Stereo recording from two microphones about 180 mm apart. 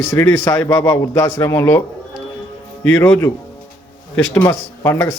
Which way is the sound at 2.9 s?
10° left (ahead or behind).